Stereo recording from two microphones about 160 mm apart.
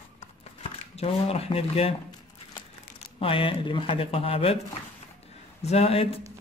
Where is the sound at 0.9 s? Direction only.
40° left (ahead or behind).